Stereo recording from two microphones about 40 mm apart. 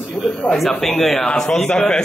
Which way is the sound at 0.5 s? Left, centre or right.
Centre.